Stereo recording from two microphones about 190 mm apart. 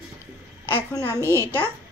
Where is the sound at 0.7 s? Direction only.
15° left (ahead or behind).